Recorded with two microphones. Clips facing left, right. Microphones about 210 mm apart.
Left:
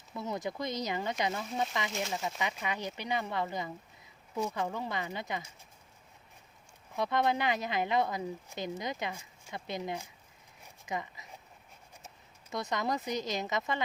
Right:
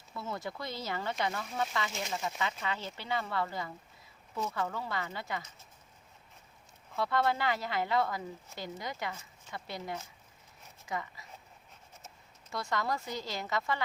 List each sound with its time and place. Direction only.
0.1 s speech: 20° left (ahead or behind)
6.9 s a woman's voice: 20° left (ahead or behind)